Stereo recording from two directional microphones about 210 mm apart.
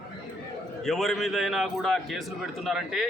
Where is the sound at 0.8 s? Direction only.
Centre (ahead or behind).